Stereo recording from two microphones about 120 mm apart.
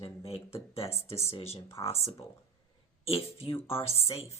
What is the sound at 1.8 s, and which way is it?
Speech, 30° left (ahead or behind).